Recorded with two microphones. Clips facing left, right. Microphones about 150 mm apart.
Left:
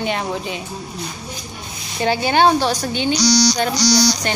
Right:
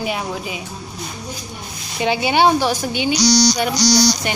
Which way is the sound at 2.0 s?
10° right (ahead or behind).